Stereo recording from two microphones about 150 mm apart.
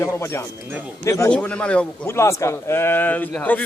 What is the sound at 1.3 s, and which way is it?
Speech, 10° left (ahead or behind).